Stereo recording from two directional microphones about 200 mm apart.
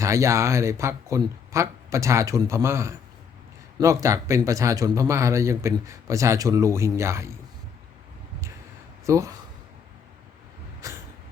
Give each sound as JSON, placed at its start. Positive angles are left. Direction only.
{"t": 0.0, "sound": "speech", "side_deg": -15}
{"t": 9.0, "sound": "speech", "side_deg": -15}